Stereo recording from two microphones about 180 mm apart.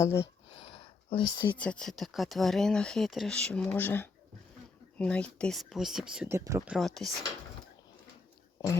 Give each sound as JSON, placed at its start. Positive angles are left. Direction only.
{"t": 0.0, "sound": "speech", "side_deg": 15}
{"t": 1.1, "sound": "speech", "side_deg": 25}
{"t": 1.5, "sound": "speech", "side_deg": 5}
{"t": 6.3, "sound": "speech", "side_deg": -15}
{"t": 6.7, "sound": "speech", "side_deg": 0}